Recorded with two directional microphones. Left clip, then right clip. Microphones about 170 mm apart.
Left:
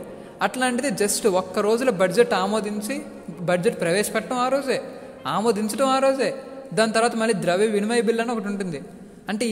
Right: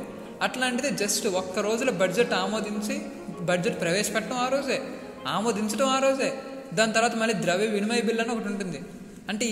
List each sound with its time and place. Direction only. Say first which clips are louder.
0.4 s a man's voice: left 4 dB; 35° left (ahead or behind)